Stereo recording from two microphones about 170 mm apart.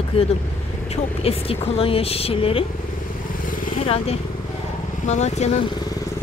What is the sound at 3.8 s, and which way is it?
Speech, 35° left (ahead or behind).